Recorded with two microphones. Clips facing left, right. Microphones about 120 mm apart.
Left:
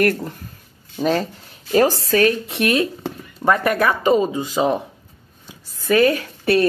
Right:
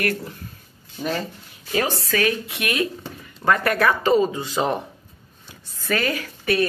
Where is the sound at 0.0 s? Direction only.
45° left (ahead or behind).